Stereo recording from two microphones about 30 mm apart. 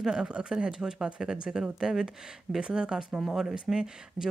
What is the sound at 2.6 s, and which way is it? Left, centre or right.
Speech, right.